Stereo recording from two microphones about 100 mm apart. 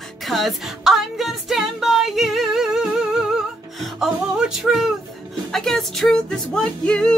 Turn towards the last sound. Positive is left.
turn(degrees=10)  # may be behind; listen again after turning